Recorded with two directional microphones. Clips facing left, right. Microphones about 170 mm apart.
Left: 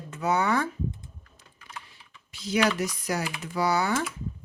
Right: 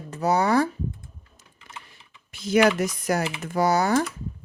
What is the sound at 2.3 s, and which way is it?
Typing, 50° right (ahead or behind).